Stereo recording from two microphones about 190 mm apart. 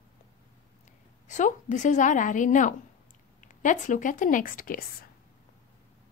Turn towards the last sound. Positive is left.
turn(degrees=50)  # may be behind; listen again after turning